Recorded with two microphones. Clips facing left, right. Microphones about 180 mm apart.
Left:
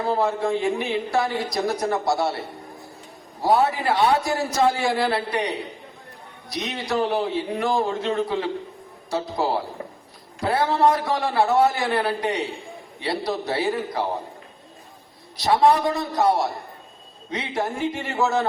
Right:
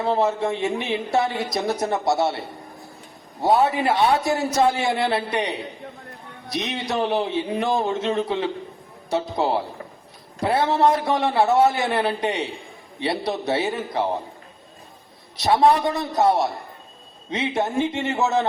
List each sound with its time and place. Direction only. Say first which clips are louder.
0.0 s a woman's voice: right 1 dB; 25° right (ahead or behind)
3.6 s a woman's voice: right 1 dB; 20° right (ahead or behind)
15.4 s a woman's voice: right 1 dB; 20° right (ahead or behind)